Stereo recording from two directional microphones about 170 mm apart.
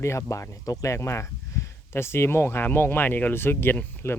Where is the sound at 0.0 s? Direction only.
15° left (ahead or behind).